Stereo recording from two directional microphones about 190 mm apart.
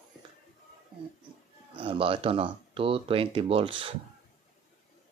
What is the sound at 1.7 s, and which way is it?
Speech, 30° right (ahead or behind).